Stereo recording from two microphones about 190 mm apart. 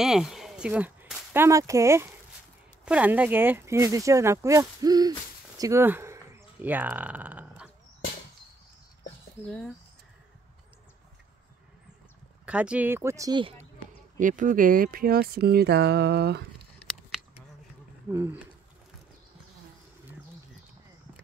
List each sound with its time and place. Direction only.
0.0 s speech: centre (ahead or behind)
12.4 s speech: 5° right (ahead or behind); by 13.7 s 30° right (ahead or behind)
14.1 s speech: 45° right (ahead or behind); by 16.4 s 60° right (ahead or behind)
18.1 s speech: 10° right (ahead or behind)